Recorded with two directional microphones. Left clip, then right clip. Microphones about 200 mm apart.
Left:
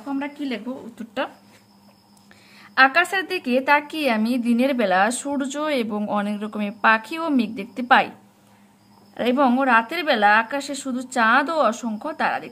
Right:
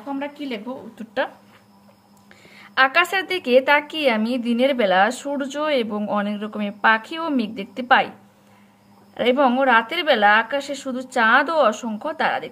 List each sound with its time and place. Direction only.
0.0 s a woman's voice: 20° left (ahead or behind)
2.5 s a woman's voice: 15° left (ahead or behind)
9.1 s a woman's voice: 15° left (ahead or behind)